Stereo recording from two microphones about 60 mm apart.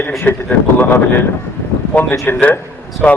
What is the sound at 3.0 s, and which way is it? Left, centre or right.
Speech, centre.